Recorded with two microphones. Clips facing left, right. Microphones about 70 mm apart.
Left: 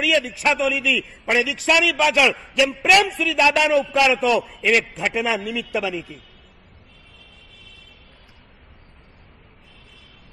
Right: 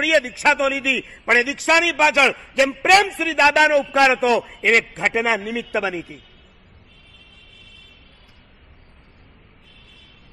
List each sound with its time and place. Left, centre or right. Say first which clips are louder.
0.0 s a man's voice: right 3 dB; right